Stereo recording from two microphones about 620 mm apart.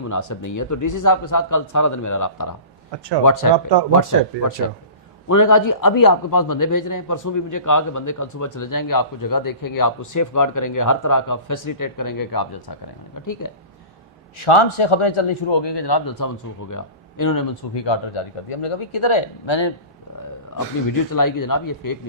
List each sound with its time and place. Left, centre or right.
0.1 s a man's voice: left
3.5 s speech: right
5.3 s a man's voice: left
14.3 s a man's voice: left
21.1 s speech: left